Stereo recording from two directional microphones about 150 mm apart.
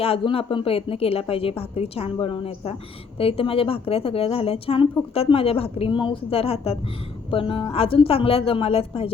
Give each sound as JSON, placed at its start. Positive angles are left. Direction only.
{"t": 0.0, "sound": "a woman's voice", "side_deg": 40}